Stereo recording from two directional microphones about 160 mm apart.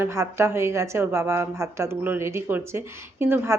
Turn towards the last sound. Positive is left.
turn(degrees=-15)  # may be behind; listen again after turning